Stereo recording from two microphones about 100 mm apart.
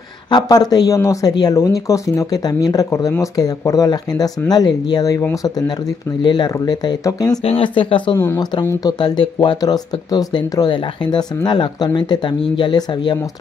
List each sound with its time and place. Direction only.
0.3 s speech: 45° left (ahead or behind)
6.2 s speech: 50° left (ahead or behind)
7.4 s speech: 65° left (ahead or behind); by 13.2 s 45° left (ahead or behind)